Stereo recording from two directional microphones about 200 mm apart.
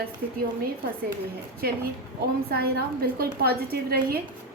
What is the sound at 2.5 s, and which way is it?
A woman's voice, 50° right (ahead or behind).